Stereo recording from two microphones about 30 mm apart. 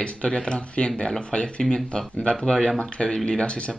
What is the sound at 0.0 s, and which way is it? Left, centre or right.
Speech, left.